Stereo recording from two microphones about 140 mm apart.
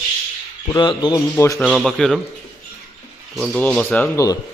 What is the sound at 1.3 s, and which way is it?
Music, 25° left (ahead or behind).